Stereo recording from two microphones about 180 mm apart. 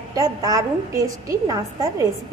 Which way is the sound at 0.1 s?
20° right (ahead or behind).